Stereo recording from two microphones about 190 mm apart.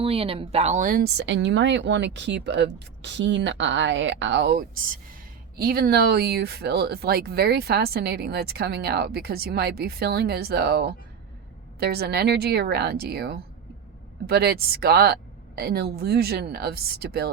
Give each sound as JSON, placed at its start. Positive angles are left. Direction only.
{"t": 0.0, "sound": "speech", "side_deg": -30}